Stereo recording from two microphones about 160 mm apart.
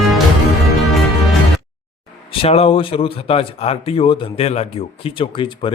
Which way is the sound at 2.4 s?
40° left (ahead or behind).